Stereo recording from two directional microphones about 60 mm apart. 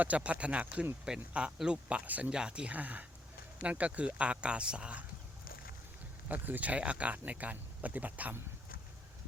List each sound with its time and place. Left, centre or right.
0.0 s speech: right
2.0 s speech: right
2.3 s speech: centre
6.2 s speech: right